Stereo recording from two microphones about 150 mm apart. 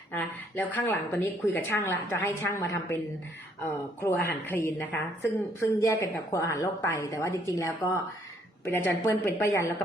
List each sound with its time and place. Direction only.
0.2 s a woman's voice: 10° left (ahead or behind)